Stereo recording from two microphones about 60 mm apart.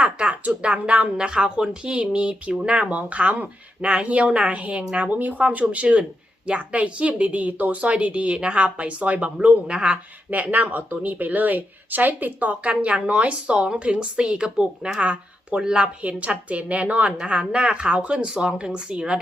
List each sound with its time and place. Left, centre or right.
0.0 s a woman's voice: centre